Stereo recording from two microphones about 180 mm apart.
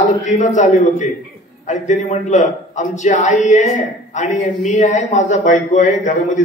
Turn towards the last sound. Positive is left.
turn(degrees=45)  # may be behind; listen again after turning